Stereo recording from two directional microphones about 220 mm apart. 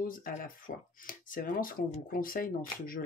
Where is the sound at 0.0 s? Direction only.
40° left (ahead or behind).